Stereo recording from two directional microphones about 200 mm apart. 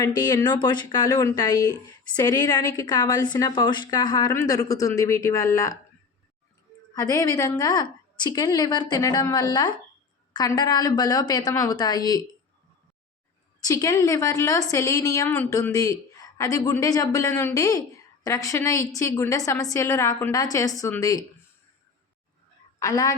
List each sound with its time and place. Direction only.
0.0 s a woman's voice: 20° left (ahead or behind)
6.9 s a woman's voice: 15° left (ahead or behind)
13.6 s a woman's voice: 15° left (ahead or behind)
22.8 s a woman's voice: 15° left (ahead or behind)